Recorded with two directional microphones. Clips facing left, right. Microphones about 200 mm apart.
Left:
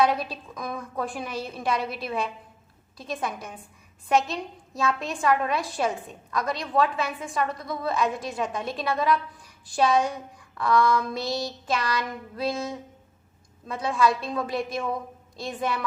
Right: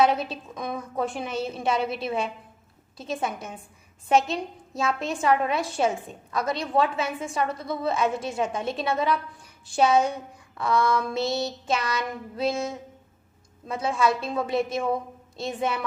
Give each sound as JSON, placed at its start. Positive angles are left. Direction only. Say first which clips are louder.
{"t": 0.0, "sound": "a woman's voice", "louder": "right 1 dB", "side_deg": -25}